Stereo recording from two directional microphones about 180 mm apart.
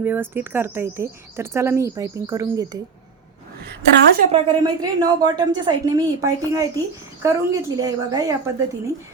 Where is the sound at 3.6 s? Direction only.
65° right (ahead or behind).